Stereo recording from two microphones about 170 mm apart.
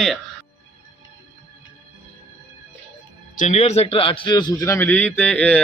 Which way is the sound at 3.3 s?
45° left (ahead or behind).